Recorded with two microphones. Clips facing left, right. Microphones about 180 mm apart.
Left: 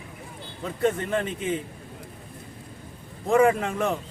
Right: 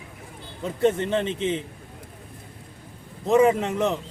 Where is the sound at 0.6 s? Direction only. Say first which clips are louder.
Right 3 dB; 25° right (ahead or behind).